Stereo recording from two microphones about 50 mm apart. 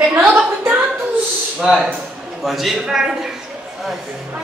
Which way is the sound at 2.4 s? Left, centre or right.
Centre.